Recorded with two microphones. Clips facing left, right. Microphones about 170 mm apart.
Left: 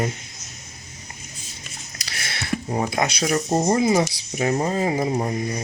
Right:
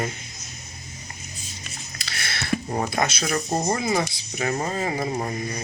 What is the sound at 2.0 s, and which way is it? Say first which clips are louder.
Speech: even; 15° left (ahead or behind).